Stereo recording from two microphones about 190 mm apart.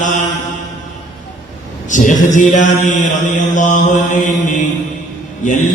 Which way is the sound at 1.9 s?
40° left (ahead or behind).